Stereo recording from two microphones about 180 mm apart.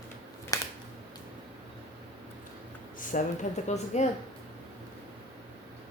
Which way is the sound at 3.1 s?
40° left (ahead or behind).